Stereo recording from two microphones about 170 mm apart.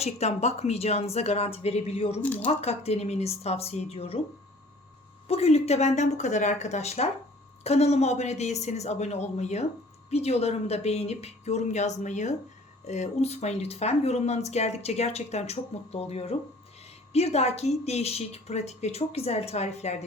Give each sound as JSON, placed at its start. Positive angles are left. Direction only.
{"t": 0.0, "sound": "speech", "side_deg": 40}
{"t": 2.2, "sound": "speech", "side_deg": 10}
{"t": 2.5, "sound": "speech", "side_deg": 40}
{"t": 5.3, "sound": "speech", "side_deg": 35}